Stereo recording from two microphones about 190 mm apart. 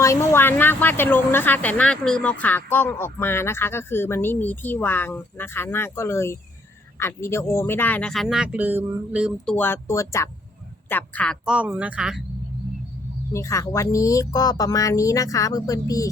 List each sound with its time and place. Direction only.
0.0 s speech: 15° left (ahead or behind); by 9.3 s 10° right (ahead or behind)
9.5 s speech: 10° left (ahead or behind)
11.4 s speech: 5° right (ahead or behind)
13.3 s speech: 15° left (ahead or behind)